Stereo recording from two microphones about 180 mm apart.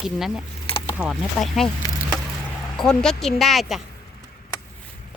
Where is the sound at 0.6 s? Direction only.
30° left (ahead or behind).